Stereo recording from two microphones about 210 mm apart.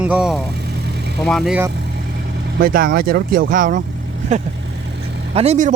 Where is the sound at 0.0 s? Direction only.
5° right (ahead or behind).